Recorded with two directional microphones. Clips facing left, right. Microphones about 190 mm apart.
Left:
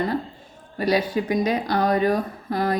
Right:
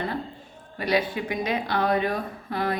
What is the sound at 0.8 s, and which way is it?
Speech, 40° left (ahead or behind).